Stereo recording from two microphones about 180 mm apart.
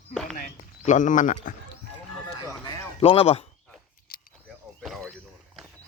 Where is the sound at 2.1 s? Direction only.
15° left (ahead or behind).